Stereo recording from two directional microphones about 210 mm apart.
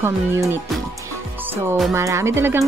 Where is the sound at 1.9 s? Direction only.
15° right (ahead or behind).